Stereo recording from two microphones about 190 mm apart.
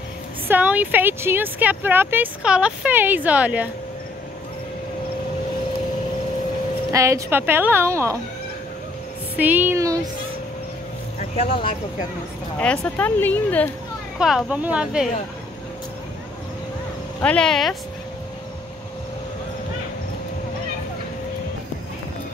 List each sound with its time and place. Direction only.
0.5 s speech: 10° right (ahead or behind)
6.9 s speech: 15° right (ahead or behind)
9.4 s speech: 10° right (ahead or behind)
11.5 s speech: 25° left (ahead or behind)
12.5 s speech: 10° left (ahead or behind)
14.1 s a woman's voice: 5° right (ahead or behind)
17.2 s a woman's voice: 5° left (ahead or behind)